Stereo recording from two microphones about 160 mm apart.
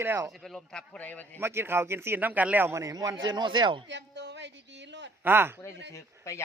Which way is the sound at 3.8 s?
90° right.